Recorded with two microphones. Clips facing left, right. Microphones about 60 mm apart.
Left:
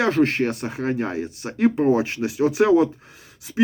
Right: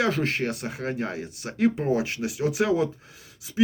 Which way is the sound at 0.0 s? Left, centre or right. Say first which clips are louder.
Left 6 dB; left.